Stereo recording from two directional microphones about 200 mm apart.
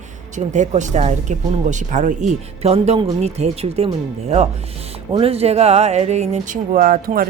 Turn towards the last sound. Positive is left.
turn(degrees=-45)  # may be behind; listen again after turning